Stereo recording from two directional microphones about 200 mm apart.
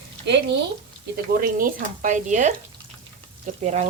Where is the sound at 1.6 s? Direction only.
45° right (ahead or behind).